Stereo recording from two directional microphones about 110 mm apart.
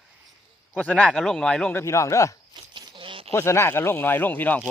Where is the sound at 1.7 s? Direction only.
25° left (ahead or behind).